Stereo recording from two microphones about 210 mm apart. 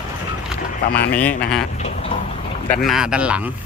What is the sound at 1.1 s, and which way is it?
Speech, 5° left (ahead or behind).